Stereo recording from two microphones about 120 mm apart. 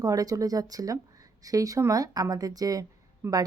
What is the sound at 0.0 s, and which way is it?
A woman's voice, 30° right (ahead or behind).